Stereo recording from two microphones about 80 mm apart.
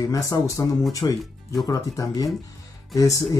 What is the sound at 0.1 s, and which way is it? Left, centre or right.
Speech, left.